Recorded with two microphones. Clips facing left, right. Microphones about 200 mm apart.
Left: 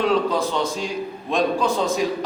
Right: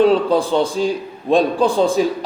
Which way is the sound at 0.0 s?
30° right (ahead or behind).